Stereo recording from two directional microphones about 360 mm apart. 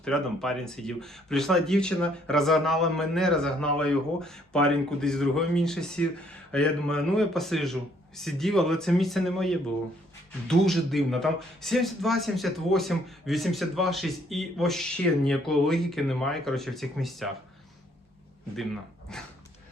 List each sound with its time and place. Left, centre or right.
0.0 s speech: centre
19.1 s speech: centre